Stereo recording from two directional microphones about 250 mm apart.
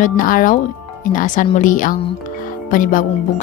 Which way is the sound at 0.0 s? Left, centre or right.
Left.